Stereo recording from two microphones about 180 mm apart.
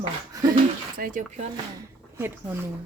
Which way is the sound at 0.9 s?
50° right (ahead or behind).